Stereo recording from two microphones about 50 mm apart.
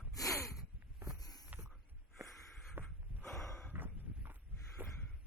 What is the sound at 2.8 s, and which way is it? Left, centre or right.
Snort, right.